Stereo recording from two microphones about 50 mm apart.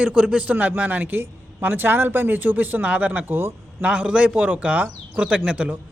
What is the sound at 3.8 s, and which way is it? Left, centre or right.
A man's voice, right.